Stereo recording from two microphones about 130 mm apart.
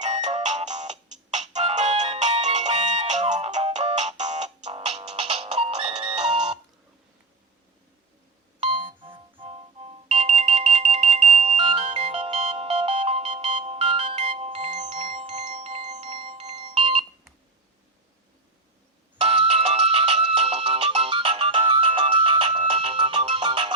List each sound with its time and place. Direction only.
0.0 s music: 60° right (ahead or behind); by 6.6 s 45° right (ahead or behind)
8.6 s ringtone: 40° right (ahead or behind)
19.2 s music: 50° right (ahead or behind)